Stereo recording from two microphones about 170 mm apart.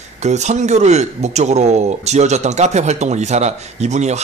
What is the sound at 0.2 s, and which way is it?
Speech, 45° right (ahead or behind).